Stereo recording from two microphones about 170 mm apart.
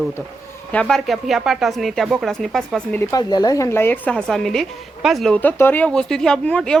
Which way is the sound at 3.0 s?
20° left (ahead or behind).